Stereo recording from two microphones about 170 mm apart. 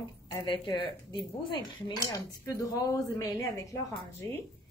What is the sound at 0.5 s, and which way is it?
Speech, 30° left (ahead or behind).